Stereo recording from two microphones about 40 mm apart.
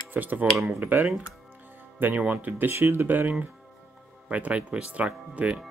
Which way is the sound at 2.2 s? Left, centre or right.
Right.